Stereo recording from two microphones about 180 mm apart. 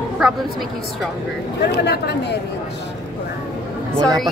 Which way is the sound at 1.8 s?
70° left (ahead or behind).